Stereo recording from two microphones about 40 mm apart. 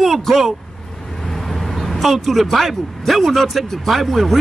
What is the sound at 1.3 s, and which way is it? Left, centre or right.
Vehicle, centre.